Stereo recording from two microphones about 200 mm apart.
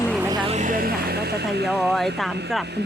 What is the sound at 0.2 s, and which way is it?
Vehicle, 20° right (ahead or behind).